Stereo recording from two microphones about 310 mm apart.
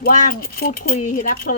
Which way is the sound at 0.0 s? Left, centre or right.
Left.